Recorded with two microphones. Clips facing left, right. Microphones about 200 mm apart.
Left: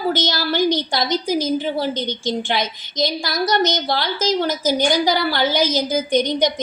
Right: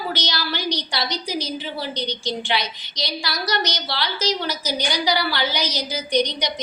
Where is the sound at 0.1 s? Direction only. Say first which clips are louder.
Left 6 dB; 50° left (ahead or behind).